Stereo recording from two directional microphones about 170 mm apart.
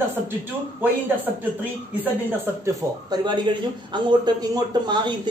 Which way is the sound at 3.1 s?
25° right (ahead or behind).